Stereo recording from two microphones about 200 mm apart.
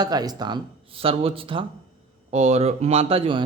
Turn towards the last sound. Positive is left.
turn(degrees=-25)  # may be behind; listen again after turning